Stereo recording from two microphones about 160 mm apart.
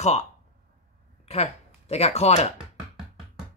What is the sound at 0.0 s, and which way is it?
Speech, 45° left (ahead or behind).